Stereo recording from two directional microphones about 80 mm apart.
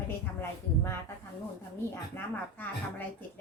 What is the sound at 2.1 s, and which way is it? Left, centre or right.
Speech, left.